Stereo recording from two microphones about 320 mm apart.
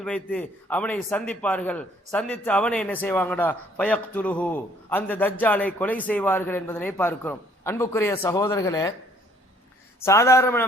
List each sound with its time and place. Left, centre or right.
0.0 s a man's voice: centre
10.0 s speech: centre